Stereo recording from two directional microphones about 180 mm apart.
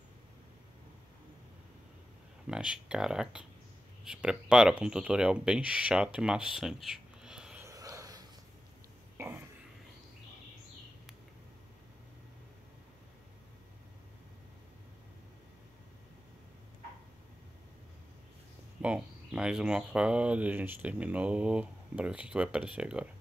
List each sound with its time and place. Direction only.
2.4 s speech: 5° right (ahead or behind)
7.6 s a sound: 20° right (ahead or behind)
18.8 s speech: 5° right (ahead or behind)